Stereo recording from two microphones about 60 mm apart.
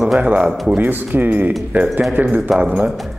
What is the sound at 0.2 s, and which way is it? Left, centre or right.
Speech, right.